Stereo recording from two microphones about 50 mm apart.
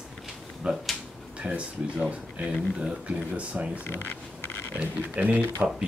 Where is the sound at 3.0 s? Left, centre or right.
Right.